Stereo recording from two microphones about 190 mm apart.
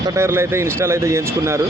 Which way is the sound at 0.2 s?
15° right (ahead or behind).